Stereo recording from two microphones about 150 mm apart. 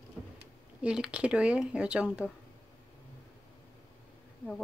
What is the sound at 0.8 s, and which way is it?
Speech, 5° right (ahead or behind).